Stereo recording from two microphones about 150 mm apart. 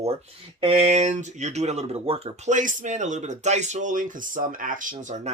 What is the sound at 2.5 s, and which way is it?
Speech, 60° right (ahead or behind).